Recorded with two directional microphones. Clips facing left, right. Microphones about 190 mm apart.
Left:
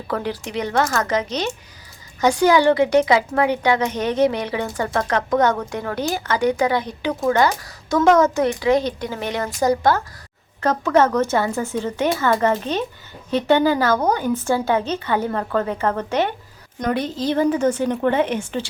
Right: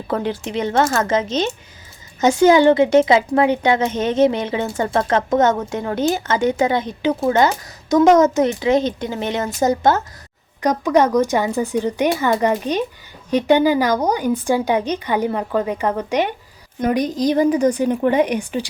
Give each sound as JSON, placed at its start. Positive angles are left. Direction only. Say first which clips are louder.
{"t": 0.1, "sound": "a woman's voice", "louder": "right 3 dB", "side_deg": -25}